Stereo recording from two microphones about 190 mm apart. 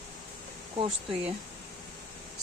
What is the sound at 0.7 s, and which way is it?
Speech, 25° right (ahead or behind).